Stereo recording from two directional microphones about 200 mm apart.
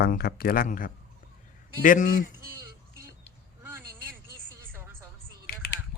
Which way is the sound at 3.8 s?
50° right (ahead or behind).